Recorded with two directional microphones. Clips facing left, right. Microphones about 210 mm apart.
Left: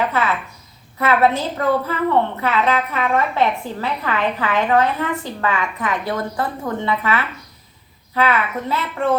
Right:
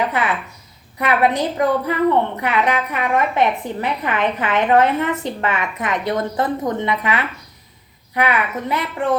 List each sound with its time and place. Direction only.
0.1 s a woman's voice: 15° right (ahead or behind)